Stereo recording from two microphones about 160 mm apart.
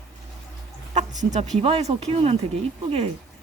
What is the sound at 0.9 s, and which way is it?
Speech, 45° right (ahead or behind).